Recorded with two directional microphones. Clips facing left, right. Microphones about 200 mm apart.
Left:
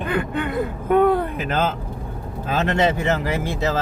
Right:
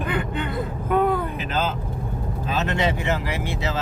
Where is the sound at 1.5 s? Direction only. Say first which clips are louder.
Left 3 dB; 50° left (ahead or behind).